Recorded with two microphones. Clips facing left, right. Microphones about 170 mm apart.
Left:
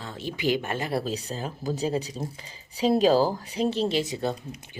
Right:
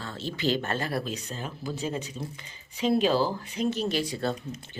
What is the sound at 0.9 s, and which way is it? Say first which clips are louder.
Speech: left 3 dB; 30° left (ahead or behind).